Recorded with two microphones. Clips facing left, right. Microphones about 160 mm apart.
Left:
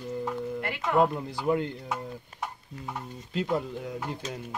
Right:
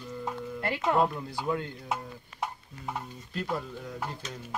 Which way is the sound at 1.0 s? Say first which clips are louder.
Left 3 dB; 20° left (ahead or behind).